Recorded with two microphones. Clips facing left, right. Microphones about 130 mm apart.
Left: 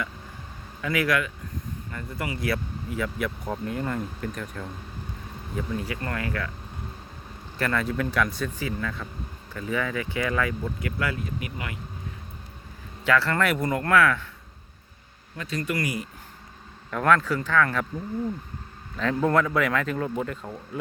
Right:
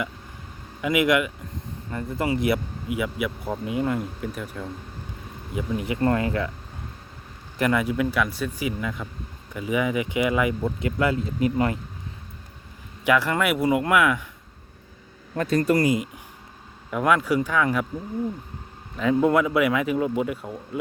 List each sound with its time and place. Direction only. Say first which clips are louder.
0.8 s speech: right 4 dB; 20° right (ahead or behind)
5.5 s speech: right 5 dB; 20° right (ahead or behind)
7.6 s speech: right 4 dB; 15° right (ahead or behind); by 11.8 s 35° right (ahead or behind)
13.1 s speech: right 2 dB; 15° right (ahead or behind)
15.4 s speech: right 9 dB; 50° right (ahead or behind)
15.7 s speech: right 7 dB; 25° right (ahead or behind)
16.9 s speech: right 1 dB; 10° right (ahead or behind)
18.9 s speech: right 3 dB; 10° right (ahead or behind)